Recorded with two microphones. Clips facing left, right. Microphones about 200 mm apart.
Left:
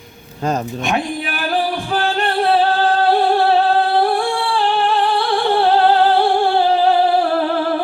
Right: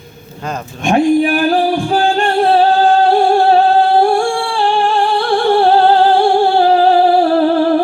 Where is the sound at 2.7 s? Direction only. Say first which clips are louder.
Right 5 dB; 25° right (ahead or behind).